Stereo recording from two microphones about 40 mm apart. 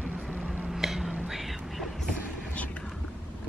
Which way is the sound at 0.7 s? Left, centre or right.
Centre.